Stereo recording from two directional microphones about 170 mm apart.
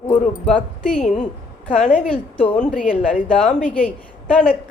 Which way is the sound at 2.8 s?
5° left (ahead or behind).